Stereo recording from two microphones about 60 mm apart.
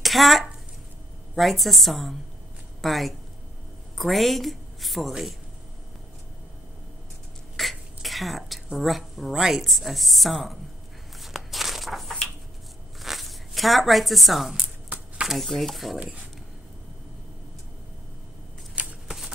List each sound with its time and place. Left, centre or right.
0.0 s a woman's voice: centre
7.5 s a sound: centre
8.7 s a woman's voice: centre
11.1 s a sound: centre
13.0 s zipper: centre
15.2 s a woman's voice: centre
18.8 s shuffling cards: right